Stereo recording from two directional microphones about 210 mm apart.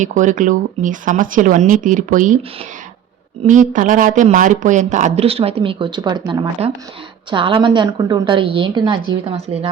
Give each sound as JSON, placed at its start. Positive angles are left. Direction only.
{"t": 0.0, "sound": "a woman's voice", "side_deg": -35}